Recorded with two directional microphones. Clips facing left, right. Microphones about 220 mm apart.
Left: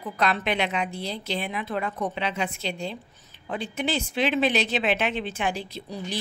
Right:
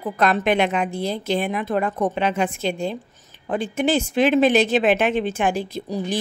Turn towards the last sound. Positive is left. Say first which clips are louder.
# right 8 dB
turn(degrees=-50)  # may be behind; listen again after turning